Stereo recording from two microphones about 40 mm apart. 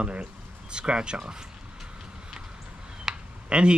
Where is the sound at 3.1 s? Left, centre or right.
Right.